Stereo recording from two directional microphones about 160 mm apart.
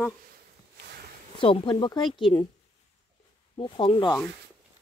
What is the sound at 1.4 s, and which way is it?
Speech, 35° left (ahead or behind).